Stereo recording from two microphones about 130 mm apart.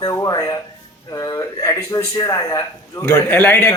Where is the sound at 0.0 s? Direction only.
30° left (ahead or behind).